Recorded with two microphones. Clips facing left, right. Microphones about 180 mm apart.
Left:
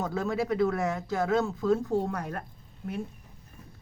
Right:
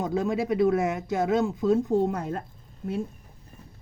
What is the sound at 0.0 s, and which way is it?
Speech, 20° right (ahead or behind).